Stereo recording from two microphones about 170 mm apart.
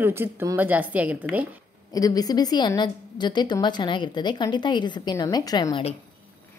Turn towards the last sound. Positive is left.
turn(degrees=25)  # may be behind; listen again after turning